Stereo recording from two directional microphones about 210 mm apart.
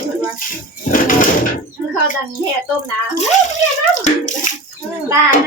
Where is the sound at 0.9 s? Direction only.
40° left (ahead or behind).